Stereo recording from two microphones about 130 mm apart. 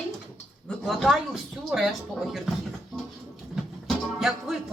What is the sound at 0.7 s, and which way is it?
Speech, centre (ahead or behind).